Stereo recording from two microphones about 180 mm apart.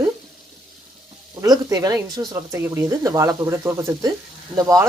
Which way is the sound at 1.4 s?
20° right (ahead or behind).